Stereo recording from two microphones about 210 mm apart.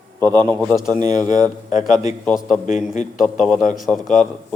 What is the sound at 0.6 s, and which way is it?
Speech, centre (ahead or behind).